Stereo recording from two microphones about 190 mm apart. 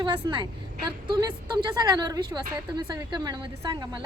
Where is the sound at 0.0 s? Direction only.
25° right (ahead or behind).